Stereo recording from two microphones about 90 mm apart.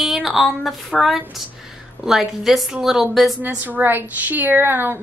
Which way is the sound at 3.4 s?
20° right (ahead or behind).